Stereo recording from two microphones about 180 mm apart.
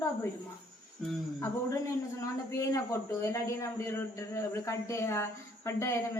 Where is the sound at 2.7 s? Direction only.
15° left (ahead or behind).